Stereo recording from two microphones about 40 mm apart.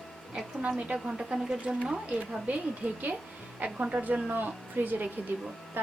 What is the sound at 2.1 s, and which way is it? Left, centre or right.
A woman's voice, right.